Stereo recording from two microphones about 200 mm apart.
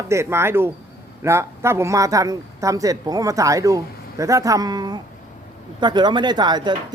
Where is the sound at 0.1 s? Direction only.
15° right (ahead or behind).